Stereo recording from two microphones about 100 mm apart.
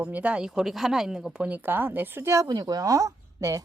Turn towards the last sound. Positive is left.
turn(degrees=-35)  # may be behind; listen again after turning